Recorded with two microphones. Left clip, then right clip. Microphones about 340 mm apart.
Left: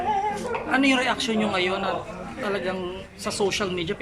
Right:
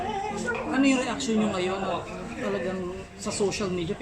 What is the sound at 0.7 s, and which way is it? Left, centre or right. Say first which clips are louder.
A man's voice: left 5 dB; left.